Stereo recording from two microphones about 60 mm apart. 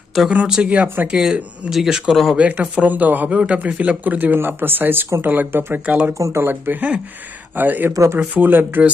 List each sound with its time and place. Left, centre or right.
0.3 s speech: centre
2.4 s speech: right
5.9 s speech: right
6.1 s speech: right
6.4 s speech: right